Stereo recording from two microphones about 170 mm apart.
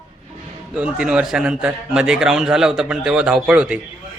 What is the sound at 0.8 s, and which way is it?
A man's voice, 5° right (ahead or behind).